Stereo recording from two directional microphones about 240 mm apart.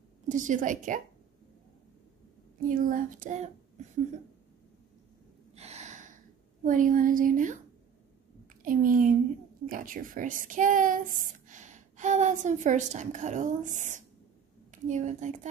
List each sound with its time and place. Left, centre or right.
0.3 s speech: right
2.7 s speech: right
5.6 s a sound: right
6.6 s speech: right
8.6 s a woman's voice: right